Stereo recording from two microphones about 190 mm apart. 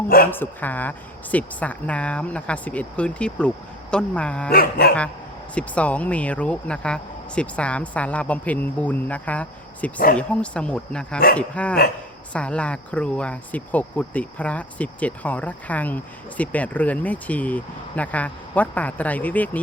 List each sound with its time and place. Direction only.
0.3 s speech: 10° left (ahead or behind)
4.5 s dog: 55° left (ahead or behind)
5.5 s a woman's voice: 5° left (ahead or behind)